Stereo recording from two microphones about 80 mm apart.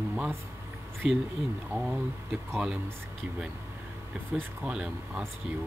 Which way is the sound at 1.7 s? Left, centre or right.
Right.